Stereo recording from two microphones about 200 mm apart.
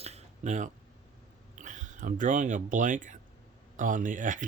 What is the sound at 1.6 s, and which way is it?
Speech, 40° right (ahead or behind).